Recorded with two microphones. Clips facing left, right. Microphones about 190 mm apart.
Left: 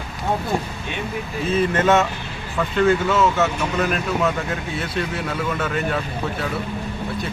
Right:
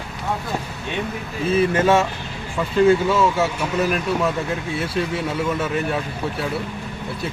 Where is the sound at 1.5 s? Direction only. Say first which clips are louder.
Right 1 dB; 10° right (ahead or behind).